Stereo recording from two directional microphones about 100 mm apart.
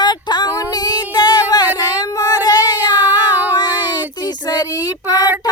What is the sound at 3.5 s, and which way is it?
Child singing, 45° left (ahead or behind).